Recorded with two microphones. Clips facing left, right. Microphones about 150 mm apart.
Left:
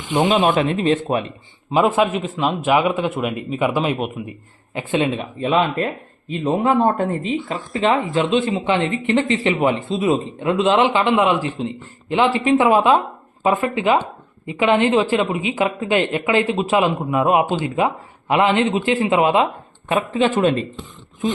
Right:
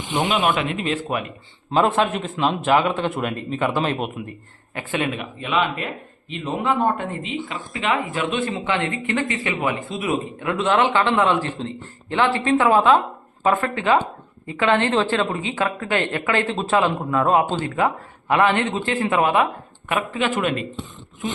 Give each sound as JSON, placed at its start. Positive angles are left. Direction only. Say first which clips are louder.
{"t": 0.5, "sound": "speech", "louder": "left 6 dB", "side_deg": 35}
{"t": 1.7, "sound": "a man's voice", "louder": "left 2 dB", "side_deg": 5}
{"t": 4.7, "sound": "speech", "louder": "left 5 dB", "side_deg": 20}
{"t": 6.9, "sound": "speech", "louder": "left 6 dB", "side_deg": 40}
{"t": 7.8, "sound": "speech", "louder": "left 5 dB", "side_deg": 30}